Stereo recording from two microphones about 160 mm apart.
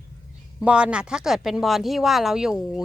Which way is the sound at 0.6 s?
5° right (ahead or behind).